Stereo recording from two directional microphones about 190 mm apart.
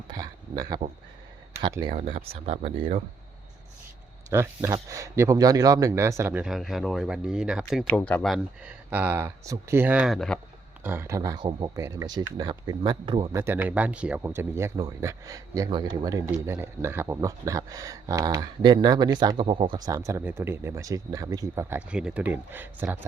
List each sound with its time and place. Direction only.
0.1 s speech: 20° right (ahead or behind)
4.3 s speech: 15° right (ahead or behind); by 10.4 s 5° left (ahead or behind)
10.8 s speech: 10° right (ahead or behind)